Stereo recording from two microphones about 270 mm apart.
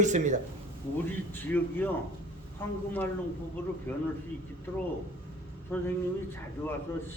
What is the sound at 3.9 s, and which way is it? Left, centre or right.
Speech, centre.